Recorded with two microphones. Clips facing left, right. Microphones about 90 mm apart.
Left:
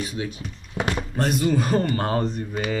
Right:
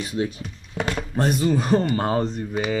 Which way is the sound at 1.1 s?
25° right (ahead or behind).